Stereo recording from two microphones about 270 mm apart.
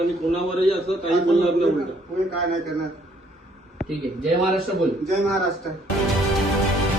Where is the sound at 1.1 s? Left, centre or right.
Centre.